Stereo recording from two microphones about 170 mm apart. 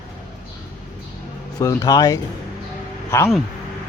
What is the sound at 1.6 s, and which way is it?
Speech, 20° left (ahead or behind).